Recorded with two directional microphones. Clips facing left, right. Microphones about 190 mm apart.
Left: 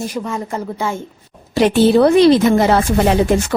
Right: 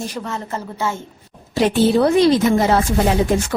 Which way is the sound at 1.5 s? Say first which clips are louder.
Left 4 dB; 70° left (ahead or behind).